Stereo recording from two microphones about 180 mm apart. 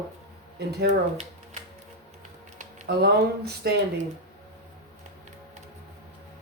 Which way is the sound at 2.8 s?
65° right (ahead or behind).